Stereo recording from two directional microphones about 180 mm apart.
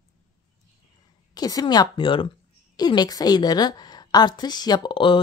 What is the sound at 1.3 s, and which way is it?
A woman's voice, 20° left (ahead or behind).